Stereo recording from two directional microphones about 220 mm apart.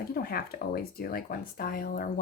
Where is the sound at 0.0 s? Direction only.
45° left (ahead or behind).